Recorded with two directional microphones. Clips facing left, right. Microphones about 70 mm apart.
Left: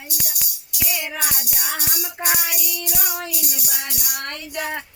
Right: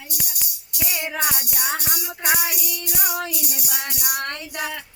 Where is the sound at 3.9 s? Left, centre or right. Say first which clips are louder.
Right 3 dB; right.